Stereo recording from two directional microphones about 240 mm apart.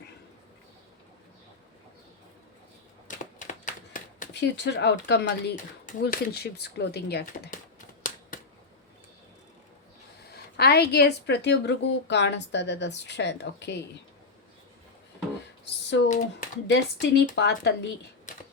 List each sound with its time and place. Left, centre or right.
3.3 s a sound: left
4.4 s speech: left
10.2 s speech: left
15.6 s a sound: left
16.6 s speech: left
18.3 s typewriter: left